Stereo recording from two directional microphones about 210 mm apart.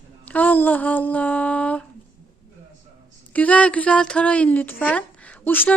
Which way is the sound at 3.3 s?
5° left (ahead or behind).